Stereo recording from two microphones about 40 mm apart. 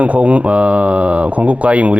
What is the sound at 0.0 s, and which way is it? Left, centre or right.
Speech, right.